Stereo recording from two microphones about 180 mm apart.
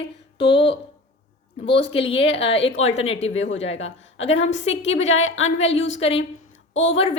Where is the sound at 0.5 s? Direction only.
70° left (ahead or behind).